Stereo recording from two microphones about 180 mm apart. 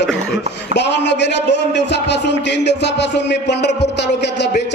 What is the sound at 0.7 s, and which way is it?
A man's voice, 75° left (ahead or behind).